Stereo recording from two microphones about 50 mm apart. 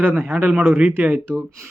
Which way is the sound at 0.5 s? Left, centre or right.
Right.